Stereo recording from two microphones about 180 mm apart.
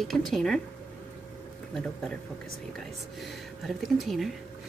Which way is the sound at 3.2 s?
Centre (ahead or behind).